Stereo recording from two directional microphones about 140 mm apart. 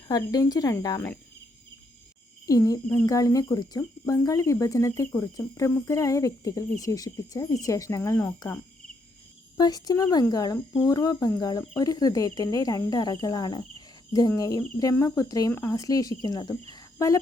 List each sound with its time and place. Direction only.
0.1 s speech: 25° left (ahead or behind)
2.5 s speech: 25° left (ahead or behind)
2.8 s cricket: 10° left (ahead or behind)
3.1 s speech: 25° left (ahead or behind)